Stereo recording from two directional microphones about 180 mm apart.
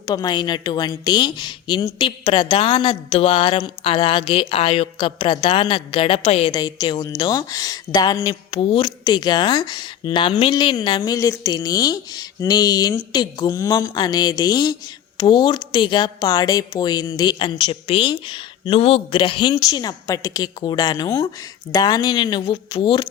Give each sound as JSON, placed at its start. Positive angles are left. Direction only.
{"t": 0.0, "sound": "a woman's voice", "side_deg": 25}
{"t": 6.5, "sound": "a woman's voice", "side_deg": 20}